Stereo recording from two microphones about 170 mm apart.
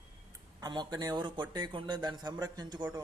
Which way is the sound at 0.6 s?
25° right (ahead or behind).